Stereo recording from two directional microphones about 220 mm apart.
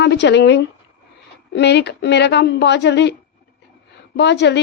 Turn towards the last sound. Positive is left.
turn(degrees=50)  # may be behind; listen again after turning